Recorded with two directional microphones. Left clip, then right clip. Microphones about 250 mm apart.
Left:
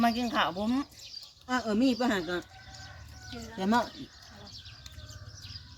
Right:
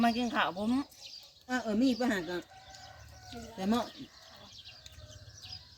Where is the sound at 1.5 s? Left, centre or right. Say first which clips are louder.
Left 3 dB; centre.